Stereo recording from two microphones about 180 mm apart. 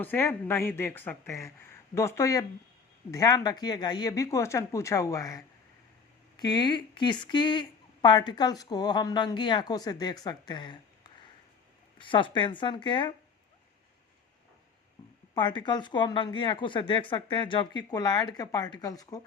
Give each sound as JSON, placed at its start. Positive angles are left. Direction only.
{"t": 0.0, "sound": "speech", "side_deg": 10}
{"t": 6.4, "sound": "speech", "side_deg": 25}
{"t": 15.4, "sound": "speech", "side_deg": 25}